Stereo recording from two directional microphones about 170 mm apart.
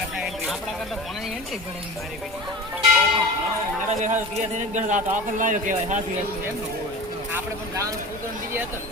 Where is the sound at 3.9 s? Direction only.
45° right (ahead or behind).